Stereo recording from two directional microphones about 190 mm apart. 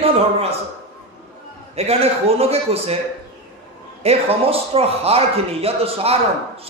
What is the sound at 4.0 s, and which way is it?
A man's voice, 30° right (ahead or behind).